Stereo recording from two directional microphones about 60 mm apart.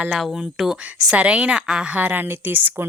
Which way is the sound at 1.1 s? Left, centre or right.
Centre.